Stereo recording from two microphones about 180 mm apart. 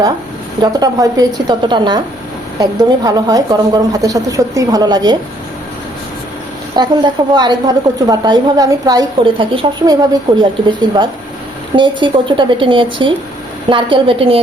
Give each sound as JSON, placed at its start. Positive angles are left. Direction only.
{"t": 0.6, "sound": "a woman's voice", "side_deg": -20}
{"t": 6.7, "sound": "a woman's voice", "side_deg": -25}